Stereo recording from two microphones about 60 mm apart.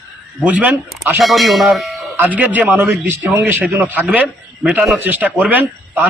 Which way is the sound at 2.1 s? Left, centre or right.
Right.